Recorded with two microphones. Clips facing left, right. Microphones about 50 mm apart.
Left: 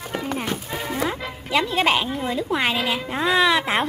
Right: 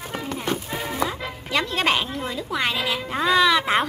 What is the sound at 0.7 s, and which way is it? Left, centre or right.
Music, centre.